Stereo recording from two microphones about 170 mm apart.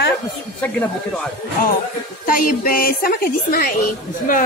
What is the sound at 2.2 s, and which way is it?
A woman's voice, 55° left (ahead or behind).